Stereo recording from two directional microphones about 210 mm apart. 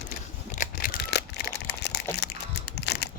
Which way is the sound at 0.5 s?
40° left (ahead or behind).